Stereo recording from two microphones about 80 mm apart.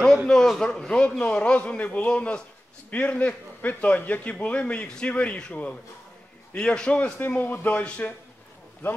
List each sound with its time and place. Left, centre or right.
0.3 s a man's voice: centre